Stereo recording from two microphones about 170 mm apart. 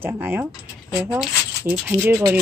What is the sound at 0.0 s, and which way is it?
Speech, 10° right (ahead or behind).